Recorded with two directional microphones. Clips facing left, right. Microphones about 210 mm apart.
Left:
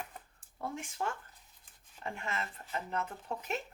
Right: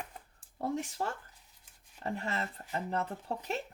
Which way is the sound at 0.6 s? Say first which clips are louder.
Right 5 dB; 35° right (ahead or behind).